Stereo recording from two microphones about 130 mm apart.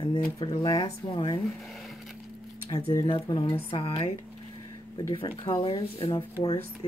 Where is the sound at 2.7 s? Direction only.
30° left (ahead or behind).